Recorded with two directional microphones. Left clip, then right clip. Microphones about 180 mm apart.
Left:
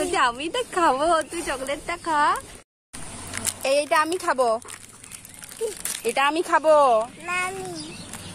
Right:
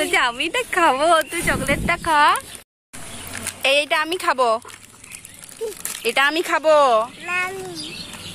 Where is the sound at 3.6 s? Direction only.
Centre (ahead or behind).